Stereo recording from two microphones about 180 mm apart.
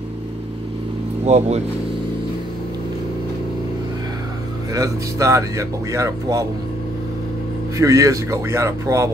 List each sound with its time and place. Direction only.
1.2 s speech: 40° right (ahead or behind)
4.7 s speech: 20° right (ahead or behind)
7.7 s speech: 15° right (ahead or behind)